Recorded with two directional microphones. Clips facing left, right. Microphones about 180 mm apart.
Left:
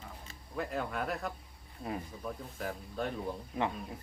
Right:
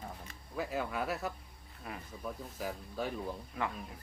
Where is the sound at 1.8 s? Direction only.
25° left (ahead or behind).